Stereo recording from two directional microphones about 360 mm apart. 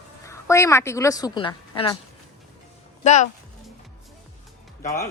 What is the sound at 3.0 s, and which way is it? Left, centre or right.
Speech, centre.